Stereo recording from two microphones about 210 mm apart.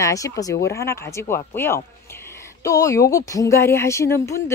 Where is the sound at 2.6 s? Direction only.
15° left (ahead or behind).